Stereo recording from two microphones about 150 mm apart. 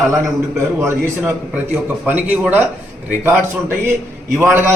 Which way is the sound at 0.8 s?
15° right (ahead or behind).